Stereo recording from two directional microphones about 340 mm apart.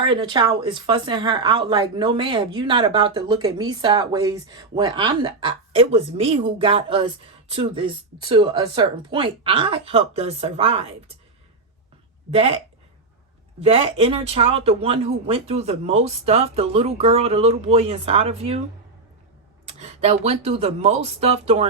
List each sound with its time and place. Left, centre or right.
0.0 s speech: centre
12.3 s speech: centre
13.6 s speech: centre
19.8 s speech: centre